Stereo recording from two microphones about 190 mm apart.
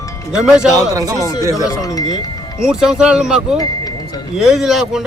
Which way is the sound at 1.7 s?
15° left (ahead or behind).